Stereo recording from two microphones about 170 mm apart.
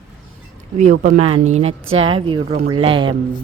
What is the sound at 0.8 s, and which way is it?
A woman's voice, 50° right (ahead or behind).